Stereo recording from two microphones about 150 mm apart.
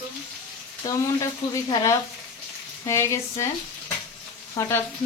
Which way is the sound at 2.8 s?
20° left (ahead or behind).